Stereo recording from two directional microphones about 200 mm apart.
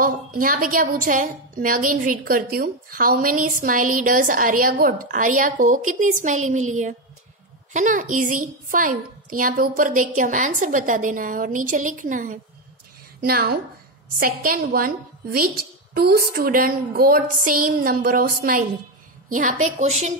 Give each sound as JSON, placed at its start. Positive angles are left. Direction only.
{"t": 0.0, "sound": "a woman's voice", "side_deg": -45}